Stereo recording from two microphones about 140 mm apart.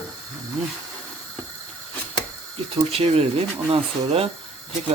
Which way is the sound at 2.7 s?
45° right (ahead or behind).